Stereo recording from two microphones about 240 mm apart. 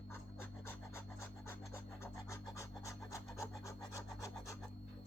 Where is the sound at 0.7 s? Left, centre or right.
Centre.